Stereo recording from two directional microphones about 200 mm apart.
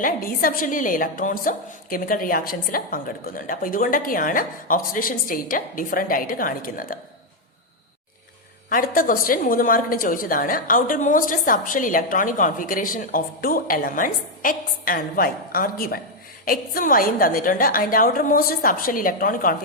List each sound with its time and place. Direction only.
0.0 s a woman's voice: 45° left (ahead or behind)
8.7 s a woman's voice: 45° left (ahead or behind)